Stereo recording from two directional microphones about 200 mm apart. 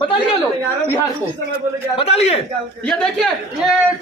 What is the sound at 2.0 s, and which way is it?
Speech, 30° left (ahead or behind).